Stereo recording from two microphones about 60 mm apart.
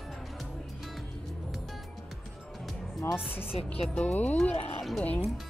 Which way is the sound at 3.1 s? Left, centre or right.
Left.